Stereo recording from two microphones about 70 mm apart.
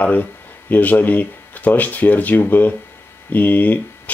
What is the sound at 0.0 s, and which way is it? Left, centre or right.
Speech, left.